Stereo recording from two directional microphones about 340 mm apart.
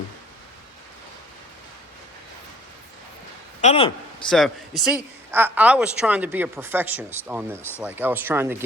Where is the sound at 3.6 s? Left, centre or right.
Centre.